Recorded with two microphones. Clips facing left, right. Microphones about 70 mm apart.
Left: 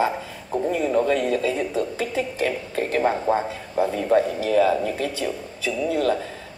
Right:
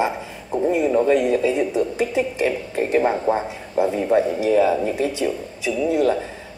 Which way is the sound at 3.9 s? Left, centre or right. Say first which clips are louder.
Even; right.